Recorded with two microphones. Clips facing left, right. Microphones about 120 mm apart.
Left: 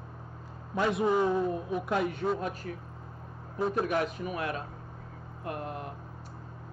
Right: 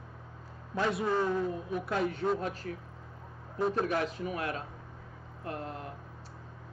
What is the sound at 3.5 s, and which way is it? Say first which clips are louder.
Speech: left 1 dB; 5° left (ahead or behind).